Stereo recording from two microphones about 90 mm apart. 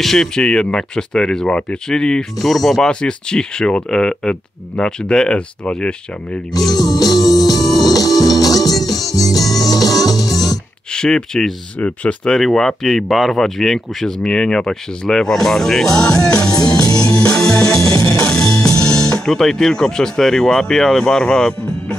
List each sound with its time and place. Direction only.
0.0 s speech: 5° left (ahead or behind)
6.9 s music: 45° left (ahead or behind)
10.9 s speech: 10° left (ahead or behind)
12.4 s speech: 5° left (ahead or behind)
15.9 s music: 40° left (ahead or behind)
19.1 s speech: 5° left (ahead or behind)